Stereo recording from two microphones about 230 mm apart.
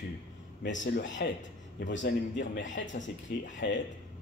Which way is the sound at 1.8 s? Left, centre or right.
Left.